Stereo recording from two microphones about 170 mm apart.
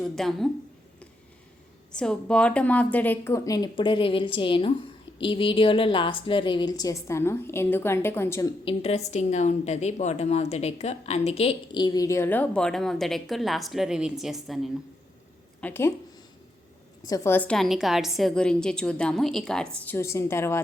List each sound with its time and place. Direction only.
0.0 s a woman's voice: centre (ahead or behind)
1.9 s a woman's voice: 5° left (ahead or behind)
8.6 s a woman's voice: 40° left (ahead or behind); by 14.7 s centre (ahead or behind)
15.6 s a woman's voice: 15° left (ahead or behind)
17.1 s a woman's voice: 15° left (ahead or behind)